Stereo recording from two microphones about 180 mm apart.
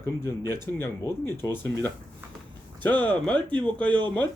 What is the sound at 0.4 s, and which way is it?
A man's voice, 15° left (ahead or behind).